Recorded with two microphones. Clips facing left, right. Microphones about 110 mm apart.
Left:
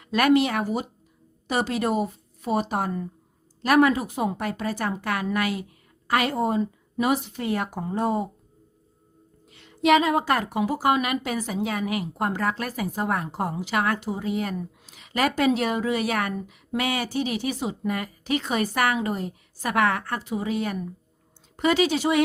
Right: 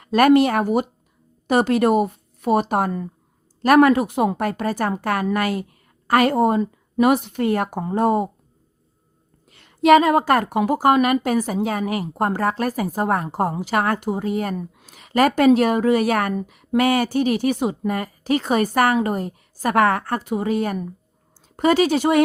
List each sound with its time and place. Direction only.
0.0 s a woman's voice: 45° right (ahead or behind)
9.5 s a woman's voice: 50° right (ahead or behind)